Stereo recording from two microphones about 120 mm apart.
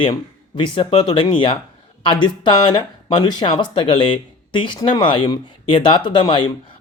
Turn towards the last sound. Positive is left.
turn(degrees=45)  # may be behind; listen again after turning